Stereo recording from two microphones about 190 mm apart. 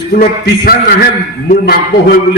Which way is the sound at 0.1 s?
55° left (ahead or behind).